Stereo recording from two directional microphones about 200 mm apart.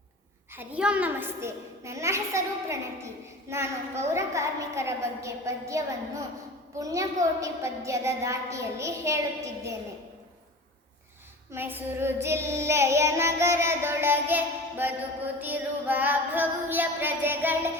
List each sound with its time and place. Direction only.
0.5 s child singing: 10° right (ahead or behind)
11.5 s child singing: 10° right (ahead or behind)